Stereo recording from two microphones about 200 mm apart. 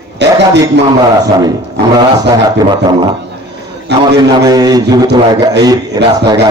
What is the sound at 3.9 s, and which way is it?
Speech, 60° right (ahead or behind).